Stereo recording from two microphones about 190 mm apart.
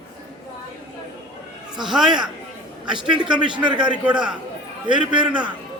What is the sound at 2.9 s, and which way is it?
Speech, 25° right (ahead or behind).